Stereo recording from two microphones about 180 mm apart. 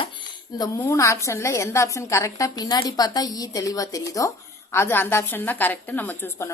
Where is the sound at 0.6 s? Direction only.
15° left (ahead or behind).